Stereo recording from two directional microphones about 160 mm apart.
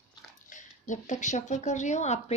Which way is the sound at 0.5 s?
50° left (ahead or behind).